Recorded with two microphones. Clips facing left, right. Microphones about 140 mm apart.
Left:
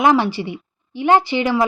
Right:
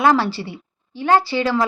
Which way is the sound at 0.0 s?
15° left (ahead or behind).